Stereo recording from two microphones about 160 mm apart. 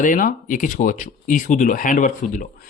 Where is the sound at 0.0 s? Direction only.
55° left (ahead or behind).